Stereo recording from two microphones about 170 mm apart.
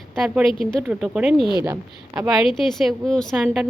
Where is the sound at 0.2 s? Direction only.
Centre (ahead or behind).